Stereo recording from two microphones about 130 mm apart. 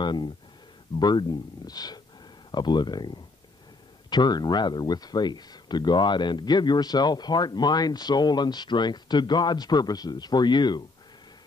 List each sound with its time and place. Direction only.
0.0 s speech: 35° left (ahead or behind)